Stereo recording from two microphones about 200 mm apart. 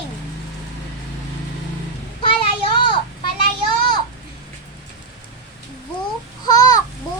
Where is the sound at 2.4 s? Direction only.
25° left (ahead or behind).